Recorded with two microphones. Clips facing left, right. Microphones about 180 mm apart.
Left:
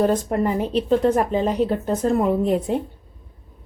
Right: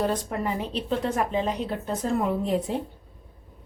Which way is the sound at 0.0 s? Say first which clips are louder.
Left 7 dB; 45° left (ahead or behind).